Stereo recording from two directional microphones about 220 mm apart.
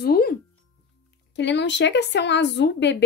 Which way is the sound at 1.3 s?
50° left (ahead or behind).